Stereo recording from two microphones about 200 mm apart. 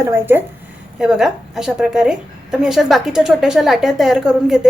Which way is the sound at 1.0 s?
Centre (ahead or behind).